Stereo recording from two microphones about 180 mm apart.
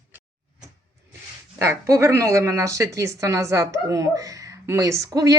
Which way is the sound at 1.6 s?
15° right (ahead or behind).